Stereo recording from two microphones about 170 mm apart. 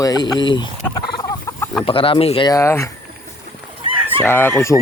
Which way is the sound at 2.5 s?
15° left (ahead or behind).